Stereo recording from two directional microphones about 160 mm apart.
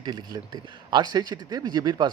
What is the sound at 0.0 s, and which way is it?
Speech, 25° right (ahead or behind).